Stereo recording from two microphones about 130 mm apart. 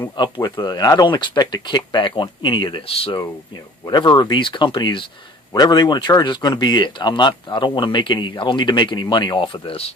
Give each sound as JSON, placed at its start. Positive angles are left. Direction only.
{"t": 0.2, "sound": "speech", "side_deg": 35}
{"t": 3.8, "sound": "speech", "side_deg": 35}